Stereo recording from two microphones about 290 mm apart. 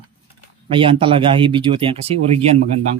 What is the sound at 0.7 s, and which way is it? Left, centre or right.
Speech, centre.